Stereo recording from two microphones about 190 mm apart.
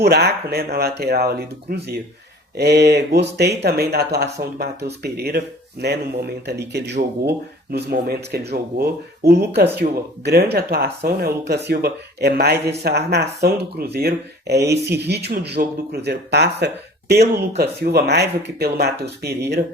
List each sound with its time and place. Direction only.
0.0 s speech: 55° right (ahead or behind)